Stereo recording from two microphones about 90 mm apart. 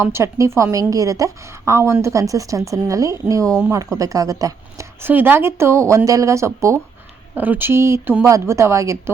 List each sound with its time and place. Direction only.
0.0 s a woman's voice: 30° right (ahead or behind)
4.9 s a woman's voice: 25° right (ahead or behind)
7.3 s a woman's voice: 20° right (ahead or behind)